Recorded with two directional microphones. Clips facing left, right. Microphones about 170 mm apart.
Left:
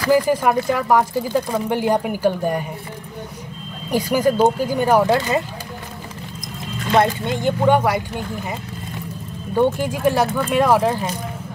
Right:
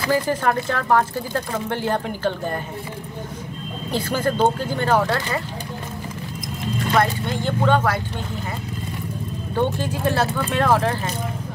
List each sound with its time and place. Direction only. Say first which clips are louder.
0.1 s speech: left 5 dB; 10° left (ahead or behind)
3.9 s speech: left 5 dB; 10° left (ahead or behind)
6.9 s speech: left 4 dB; 20° left (ahead or behind)
9.6 s speech: left 4 dB; 15° left (ahead or behind)